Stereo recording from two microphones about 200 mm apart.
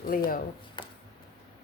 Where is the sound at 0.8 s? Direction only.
20° left (ahead or behind).